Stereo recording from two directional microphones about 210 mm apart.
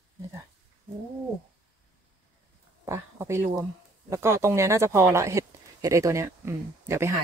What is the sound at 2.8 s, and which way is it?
Speech, 15° right (ahead or behind).